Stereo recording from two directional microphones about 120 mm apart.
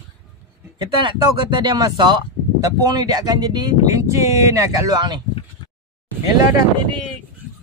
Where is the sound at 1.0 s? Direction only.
40° right (ahead or behind).